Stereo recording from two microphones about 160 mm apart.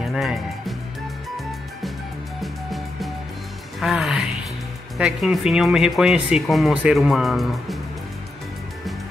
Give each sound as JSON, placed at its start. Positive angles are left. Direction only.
{"t": 0.0, "sound": "speech", "side_deg": 0}
{"t": 2.4, "sound": "music", "side_deg": 0}
{"t": 3.8, "sound": "speech", "side_deg": 0}